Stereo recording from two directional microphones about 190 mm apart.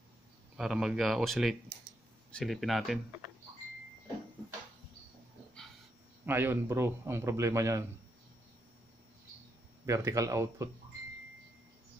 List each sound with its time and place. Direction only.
0.6 s speech: centre (ahead or behind)
6.2 s a man's voice: 10° right (ahead or behind)
9.8 s a man's voice: 15° right (ahead or behind)